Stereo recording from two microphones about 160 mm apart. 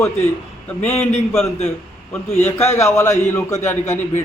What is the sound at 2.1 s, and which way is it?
A man's voice, 15° left (ahead or behind).